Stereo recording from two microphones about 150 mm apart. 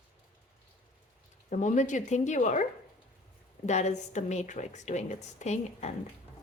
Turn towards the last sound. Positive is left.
turn(degrees=45)  # may be behind; listen again after turning